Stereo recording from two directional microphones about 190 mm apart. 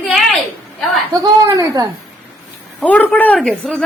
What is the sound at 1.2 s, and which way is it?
Speech, 15° right (ahead or behind).